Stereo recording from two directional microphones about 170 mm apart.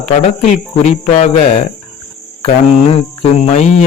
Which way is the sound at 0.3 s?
40° left (ahead or behind).